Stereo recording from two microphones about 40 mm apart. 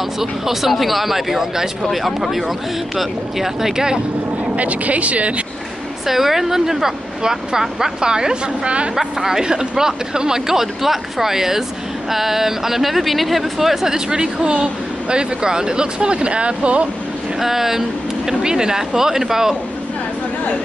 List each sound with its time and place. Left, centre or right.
0.2 s speech: centre
4.6 s speech: right
6.0 s speech: centre; by 8.9 s right
8.9 s speech: centre
13.9 s speech: centre
17.4 s speech: centre